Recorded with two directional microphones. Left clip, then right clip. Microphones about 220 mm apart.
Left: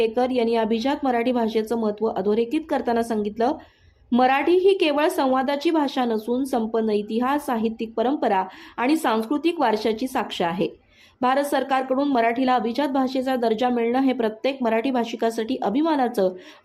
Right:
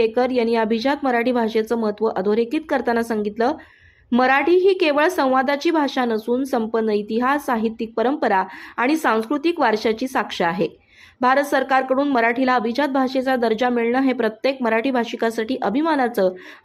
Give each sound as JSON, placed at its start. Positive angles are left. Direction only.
{"t": 0.0, "sound": "a woman's voice", "side_deg": -15}